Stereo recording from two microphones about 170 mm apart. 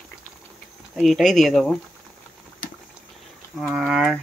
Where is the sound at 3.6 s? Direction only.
5° right (ahead or behind).